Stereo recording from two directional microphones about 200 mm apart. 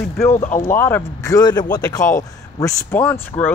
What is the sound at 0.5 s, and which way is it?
Speech, 10° left (ahead or behind).